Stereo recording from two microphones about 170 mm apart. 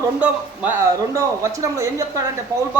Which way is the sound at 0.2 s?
10° right (ahead or behind).